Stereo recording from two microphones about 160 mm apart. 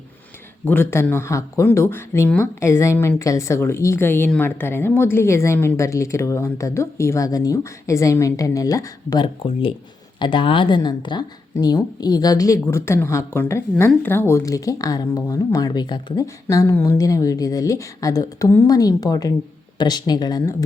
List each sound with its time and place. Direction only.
0.6 s speech: 10° left (ahead or behind)